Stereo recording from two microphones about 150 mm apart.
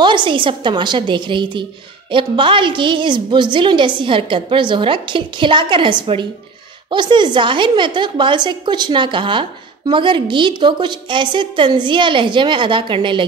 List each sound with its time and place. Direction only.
0.0 s a woman's voice: 30° right (ahead or behind)